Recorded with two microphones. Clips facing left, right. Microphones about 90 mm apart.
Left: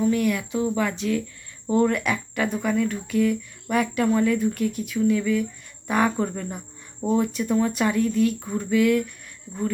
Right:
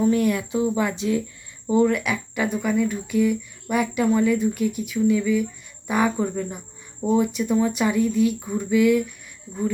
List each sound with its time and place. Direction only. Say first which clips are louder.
0.0 s speech: right 2 dB; 30° right (ahead or behind)
1.6 s speech: right 1 dB; 5° right (ahead or behind)